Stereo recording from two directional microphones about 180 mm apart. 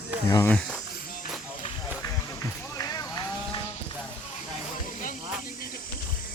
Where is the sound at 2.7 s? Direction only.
20° left (ahead or behind).